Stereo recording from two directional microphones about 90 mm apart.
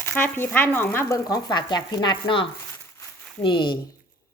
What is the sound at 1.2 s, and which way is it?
Speech, 50° left (ahead or behind).